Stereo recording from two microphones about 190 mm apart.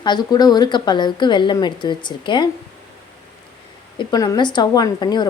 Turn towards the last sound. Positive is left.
turn(degrees=20)  # may be behind; listen again after turning